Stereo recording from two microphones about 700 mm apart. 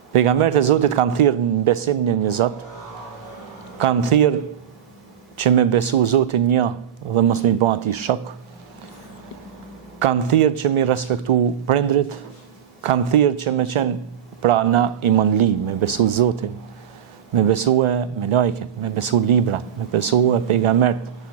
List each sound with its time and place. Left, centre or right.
0.1 s a man's voice: right
3.8 s a man's voice: right
5.4 s a man's voice: right
10.0 s a man's voice: right
12.8 s a man's voice: right
17.3 s a man's voice: right